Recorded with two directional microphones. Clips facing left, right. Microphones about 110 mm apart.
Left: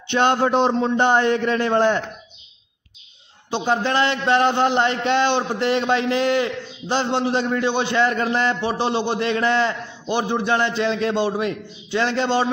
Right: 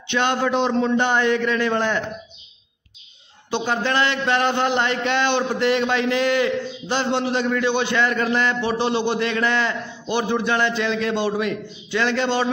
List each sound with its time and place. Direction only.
0.1 s a man's voice: 40° left (ahead or behind)
0.7 s a man's voice: 25° left (ahead or behind)
3.4 s a man's voice: 30° left (ahead or behind)